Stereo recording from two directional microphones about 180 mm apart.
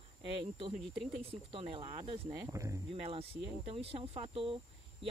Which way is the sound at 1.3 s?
30° right (ahead or behind).